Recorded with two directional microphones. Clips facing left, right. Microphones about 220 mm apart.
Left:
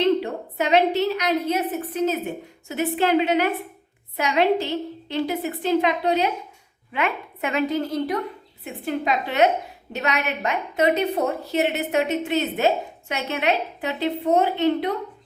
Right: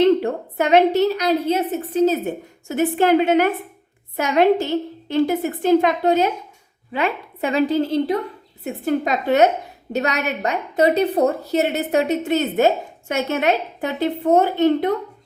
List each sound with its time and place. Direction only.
0.0 s a sound: 50° right (ahead or behind)
1.1 s a woman's voice: 35° right (ahead or behind)
2.6 s a woman's voice: 45° right (ahead or behind)
6.9 s a woman's voice: 35° right (ahead or behind)
8.6 s a woman's voice: 45° right (ahead or behind)